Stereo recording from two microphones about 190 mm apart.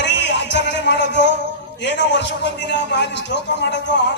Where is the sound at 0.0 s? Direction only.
70° left (ahead or behind).